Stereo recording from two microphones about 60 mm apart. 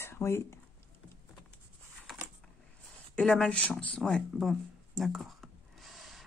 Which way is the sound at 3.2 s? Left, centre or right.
Centre.